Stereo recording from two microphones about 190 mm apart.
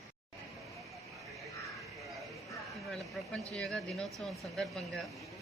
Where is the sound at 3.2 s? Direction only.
5° left (ahead or behind).